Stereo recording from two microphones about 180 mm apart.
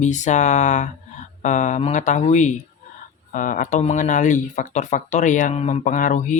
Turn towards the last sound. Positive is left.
turn(degrees=45)  # may be behind; listen again after turning